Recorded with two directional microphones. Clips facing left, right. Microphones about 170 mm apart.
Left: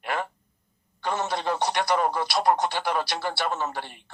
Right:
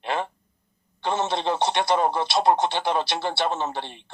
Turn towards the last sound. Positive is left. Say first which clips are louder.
# right 2 dB
turn(degrees=-25)  # may be behind; listen again after turning